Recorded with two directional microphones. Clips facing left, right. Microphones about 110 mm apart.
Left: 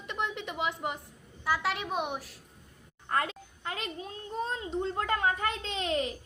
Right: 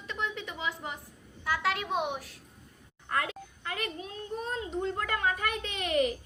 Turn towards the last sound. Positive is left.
turn(degrees=25)  # may be behind; listen again after turning